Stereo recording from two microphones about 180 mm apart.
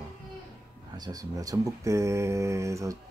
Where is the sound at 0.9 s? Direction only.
20° right (ahead or behind).